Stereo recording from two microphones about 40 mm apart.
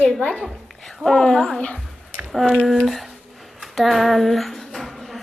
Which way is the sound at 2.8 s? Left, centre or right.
Centre.